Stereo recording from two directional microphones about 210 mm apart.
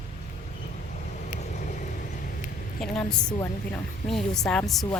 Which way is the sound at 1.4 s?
35° left (ahead or behind).